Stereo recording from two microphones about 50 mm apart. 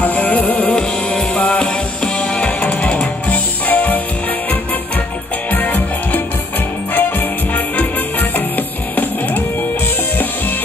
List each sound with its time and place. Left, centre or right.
0.0 s music: left
1.6 s music: centre; by 4.0 s left
5.5 s music: left